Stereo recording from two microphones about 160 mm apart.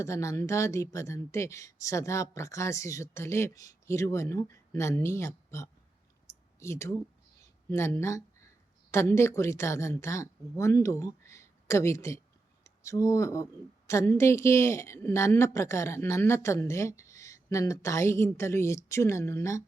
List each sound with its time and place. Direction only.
0.0 s a woman's voice: 20° left (ahead or behind)